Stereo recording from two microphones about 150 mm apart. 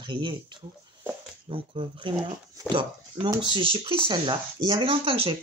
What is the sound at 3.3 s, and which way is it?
Speech, 35° right (ahead or behind).